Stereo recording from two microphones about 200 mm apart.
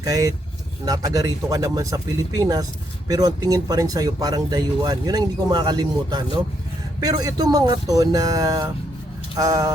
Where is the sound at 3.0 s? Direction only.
20° right (ahead or behind).